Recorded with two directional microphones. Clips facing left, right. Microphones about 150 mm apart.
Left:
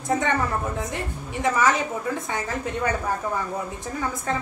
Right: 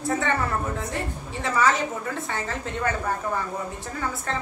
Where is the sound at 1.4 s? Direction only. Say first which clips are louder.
Left 1 dB; 15° left (ahead or behind).